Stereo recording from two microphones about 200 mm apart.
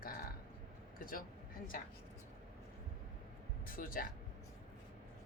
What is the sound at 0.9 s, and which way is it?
Speech, 45° left (ahead or behind).